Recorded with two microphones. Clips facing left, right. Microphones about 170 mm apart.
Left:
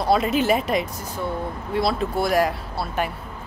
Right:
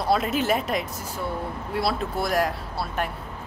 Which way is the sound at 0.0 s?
Centre (ahead or behind).